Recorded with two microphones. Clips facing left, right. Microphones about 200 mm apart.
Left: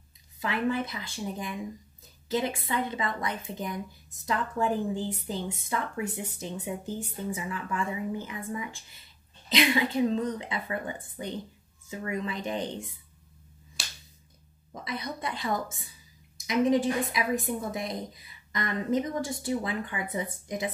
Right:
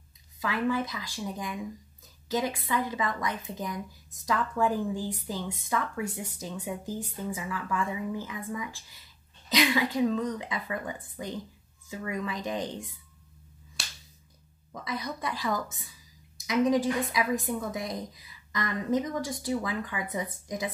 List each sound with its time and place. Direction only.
0.4 s speech: 25° left (ahead or behind)
14.9 s speech: 25° left (ahead or behind)